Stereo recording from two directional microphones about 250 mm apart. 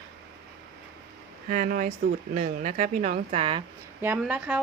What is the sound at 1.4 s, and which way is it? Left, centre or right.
Speech, right.